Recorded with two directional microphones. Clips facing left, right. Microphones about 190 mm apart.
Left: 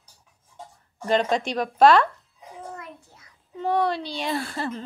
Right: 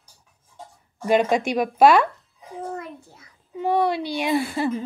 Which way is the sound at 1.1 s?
10° right (ahead or behind).